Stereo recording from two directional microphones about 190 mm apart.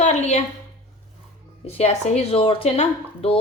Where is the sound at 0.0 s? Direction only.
35° left (ahead or behind).